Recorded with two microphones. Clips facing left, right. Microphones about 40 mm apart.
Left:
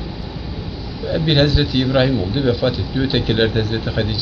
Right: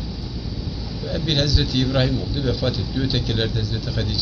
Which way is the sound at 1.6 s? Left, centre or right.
Centre.